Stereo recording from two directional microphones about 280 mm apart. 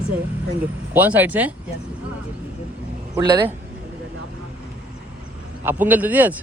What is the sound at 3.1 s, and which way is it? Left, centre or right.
Speech, centre.